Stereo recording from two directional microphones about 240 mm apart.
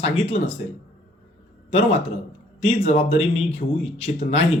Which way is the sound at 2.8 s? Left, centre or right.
Left.